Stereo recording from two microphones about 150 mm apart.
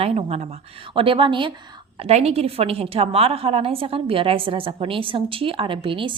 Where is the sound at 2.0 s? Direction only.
45° right (ahead or behind).